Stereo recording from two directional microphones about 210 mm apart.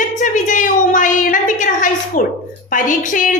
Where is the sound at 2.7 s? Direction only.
40° left (ahead or behind).